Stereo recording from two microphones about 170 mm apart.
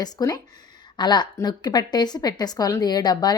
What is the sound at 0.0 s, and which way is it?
A woman's voice, 20° left (ahead or behind).